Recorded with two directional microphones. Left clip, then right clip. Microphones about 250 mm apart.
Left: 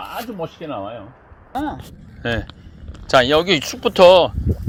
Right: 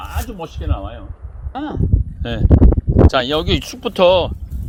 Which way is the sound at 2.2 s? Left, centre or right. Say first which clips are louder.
Right 5 dB; centre.